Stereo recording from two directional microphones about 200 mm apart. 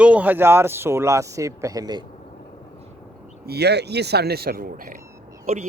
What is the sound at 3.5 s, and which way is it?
Speech, 55° right (ahead or behind).